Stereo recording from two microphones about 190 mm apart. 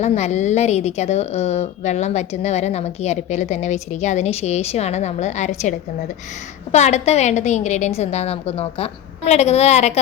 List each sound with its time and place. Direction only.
0.0 s a woman's voice: 35° left (ahead or behind)